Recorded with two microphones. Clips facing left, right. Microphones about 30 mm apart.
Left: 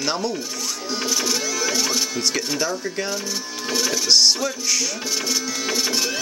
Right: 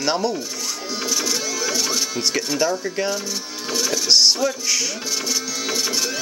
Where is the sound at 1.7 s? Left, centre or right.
Centre.